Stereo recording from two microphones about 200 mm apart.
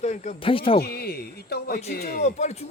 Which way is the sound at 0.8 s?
50° left (ahead or behind).